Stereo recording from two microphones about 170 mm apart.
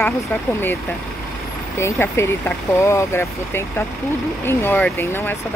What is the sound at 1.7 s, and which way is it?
Speech, 15° left (ahead or behind).